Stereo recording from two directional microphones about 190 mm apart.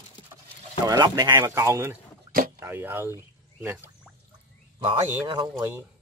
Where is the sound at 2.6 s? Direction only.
10° right (ahead or behind).